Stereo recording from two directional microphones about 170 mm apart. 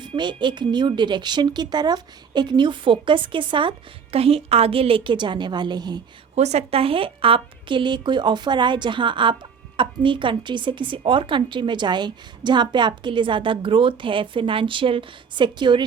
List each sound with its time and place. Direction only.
0.0 s a woman's voice: 30° right (ahead or behind)
6.3 s a woman's voice: 40° right (ahead or behind)